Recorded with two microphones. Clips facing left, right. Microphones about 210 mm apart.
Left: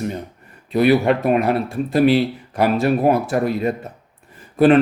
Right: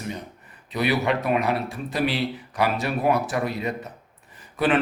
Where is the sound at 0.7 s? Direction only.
50° left (ahead or behind).